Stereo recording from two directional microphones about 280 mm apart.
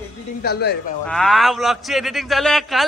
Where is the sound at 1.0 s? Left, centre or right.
Centre.